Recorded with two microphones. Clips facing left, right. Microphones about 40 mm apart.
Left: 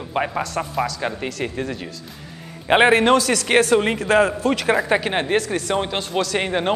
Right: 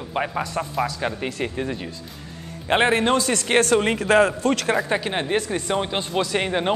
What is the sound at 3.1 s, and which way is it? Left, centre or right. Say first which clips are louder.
Speech: left 4 dB; left.